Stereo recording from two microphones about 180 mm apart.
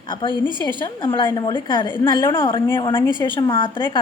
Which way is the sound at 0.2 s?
25° left (ahead or behind).